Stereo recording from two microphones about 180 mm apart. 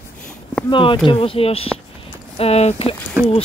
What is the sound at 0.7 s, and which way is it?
Speech, 30° left (ahead or behind).